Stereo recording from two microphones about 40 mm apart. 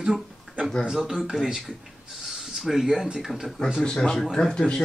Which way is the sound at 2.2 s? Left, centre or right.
Centre.